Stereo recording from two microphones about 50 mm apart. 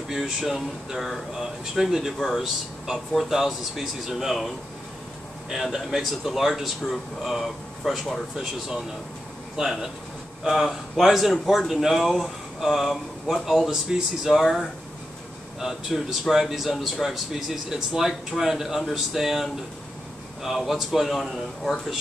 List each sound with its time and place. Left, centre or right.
0.1 s a man's voice: centre
9.6 s a man's voice: centre
15.6 s a man's voice: centre